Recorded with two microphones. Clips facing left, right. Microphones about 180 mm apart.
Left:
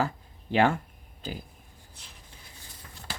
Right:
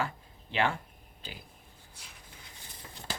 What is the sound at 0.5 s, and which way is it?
Speech, 40° left (ahead or behind).